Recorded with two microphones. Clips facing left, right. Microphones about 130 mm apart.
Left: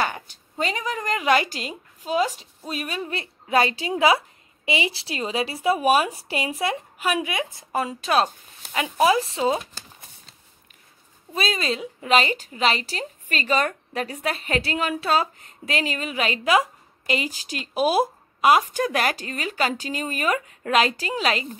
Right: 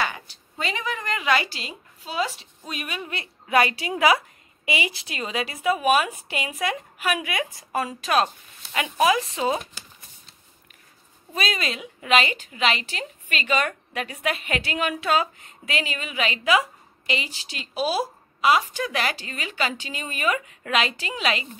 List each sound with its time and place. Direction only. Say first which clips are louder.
0.0 s a woman's voice: left 2 dB; 40° left (ahead or behind)
11.3 s a woman's voice: left 2 dB; 30° left (ahead or behind)